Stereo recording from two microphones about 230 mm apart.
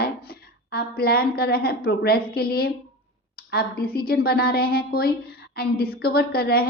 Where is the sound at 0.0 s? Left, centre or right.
Left.